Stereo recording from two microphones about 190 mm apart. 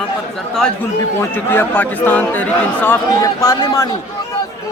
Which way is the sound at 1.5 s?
10° left (ahead or behind).